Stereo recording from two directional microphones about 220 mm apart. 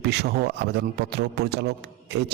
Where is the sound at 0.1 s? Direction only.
50° right (ahead or behind).